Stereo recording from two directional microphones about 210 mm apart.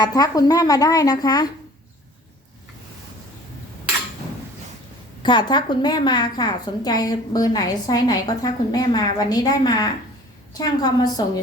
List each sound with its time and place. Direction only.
0.0 s a woman's voice: 15° left (ahead or behind)
5.2 s a woman's voice: 20° left (ahead or behind)